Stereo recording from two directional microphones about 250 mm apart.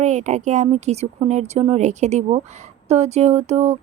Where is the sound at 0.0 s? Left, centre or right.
Right.